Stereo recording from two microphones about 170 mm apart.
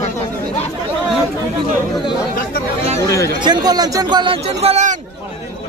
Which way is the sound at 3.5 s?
25° right (ahead or behind).